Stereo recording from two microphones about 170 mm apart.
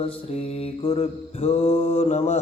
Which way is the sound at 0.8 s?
35° left (ahead or behind).